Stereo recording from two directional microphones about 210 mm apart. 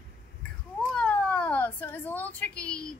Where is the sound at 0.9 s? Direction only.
5° left (ahead or behind).